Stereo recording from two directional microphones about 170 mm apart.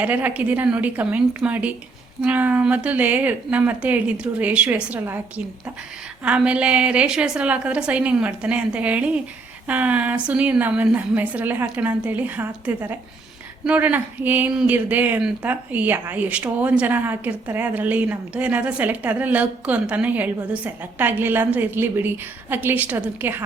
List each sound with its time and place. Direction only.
0.0 s speech: 10° right (ahead or behind)
6.2 s speech: 5° right (ahead or behind)